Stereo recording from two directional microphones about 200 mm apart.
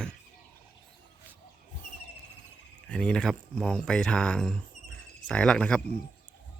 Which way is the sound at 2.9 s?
5° left (ahead or behind).